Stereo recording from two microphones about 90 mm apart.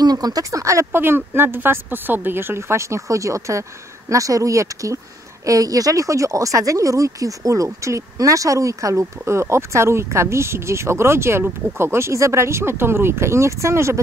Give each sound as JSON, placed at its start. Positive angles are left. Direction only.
{"t": 0.0, "sound": "speech", "side_deg": -45}